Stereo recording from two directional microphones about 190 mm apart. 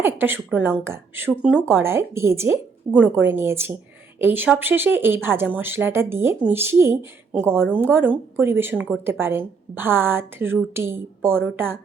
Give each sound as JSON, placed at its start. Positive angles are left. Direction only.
{"t": 0.0, "sound": "a woman's voice", "side_deg": -10}